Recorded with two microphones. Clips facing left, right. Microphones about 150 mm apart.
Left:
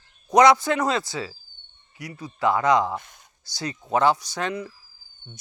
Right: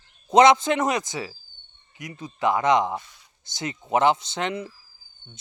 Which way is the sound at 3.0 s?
50° left (ahead or behind).